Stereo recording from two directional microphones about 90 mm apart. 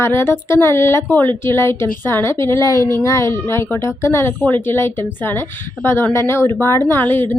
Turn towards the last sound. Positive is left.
turn(degrees=20)  # may be behind; listen again after turning